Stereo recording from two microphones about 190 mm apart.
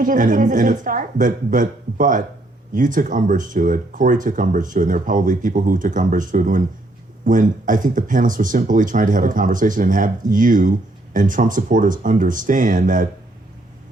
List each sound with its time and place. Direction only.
0.0 s speech: 45° right (ahead or behind)